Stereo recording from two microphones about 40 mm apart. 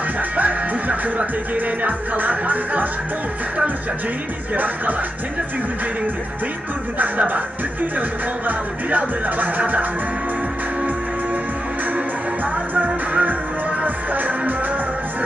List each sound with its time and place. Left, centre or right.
0.4 s speech: right
7.0 s music: right
8.5 s music: right
12.7 s music: right